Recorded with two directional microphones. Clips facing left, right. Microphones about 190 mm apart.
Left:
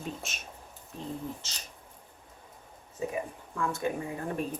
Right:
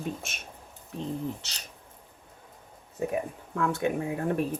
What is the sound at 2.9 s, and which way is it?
Speech, 60° right (ahead or behind).